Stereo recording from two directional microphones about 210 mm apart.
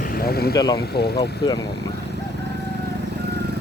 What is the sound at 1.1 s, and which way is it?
Speech, 20° left (ahead or behind).